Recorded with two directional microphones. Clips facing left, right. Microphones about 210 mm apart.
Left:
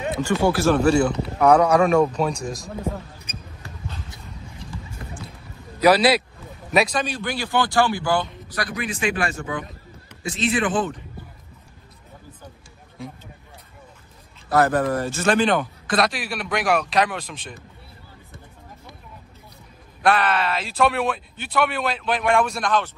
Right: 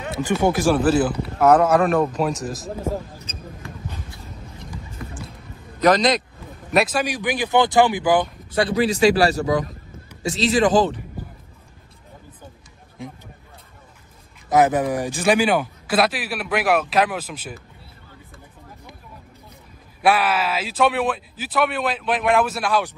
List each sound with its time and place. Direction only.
0.2 s speech: 15° right (ahead or behind)
0.7 s a man's voice: centre (ahead or behind)
3.3 s basketball bounce: 15° left (ahead or behind)
5.8 s a man's voice: 10° left (ahead or behind)
7.1 s speech: 15° right (ahead or behind)
8.6 s speech: 35° right (ahead or behind)
14.5 s a man's voice: 20° right (ahead or behind)
20.0 s a man's voice: 5° right (ahead or behind)